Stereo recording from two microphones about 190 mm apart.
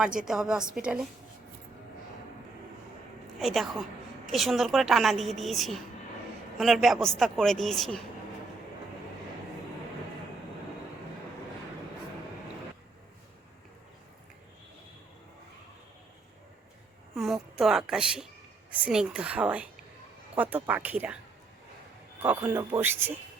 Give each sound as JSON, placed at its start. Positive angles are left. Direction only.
{"t": 0.2, "sound": "a man's voice", "side_deg": -5}
{"t": 3.3, "sound": "a woman's voice", "side_deg": 0}
{"t": 17.2, "sound": "a sound", "side_deg": 0}
{"t": 18.7, "sound": "a woman's voice", "side_deg": -5}
{"t": 22.2, "sound": "a woman's voice", "side_deg": -10}